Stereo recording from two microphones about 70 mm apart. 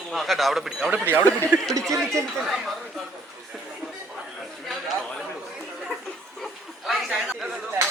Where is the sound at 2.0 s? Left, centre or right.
Centre.